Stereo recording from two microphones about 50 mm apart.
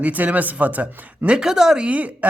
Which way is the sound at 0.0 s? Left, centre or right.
Right.